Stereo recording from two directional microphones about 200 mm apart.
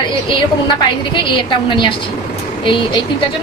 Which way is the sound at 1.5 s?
25° left (ahead or behind).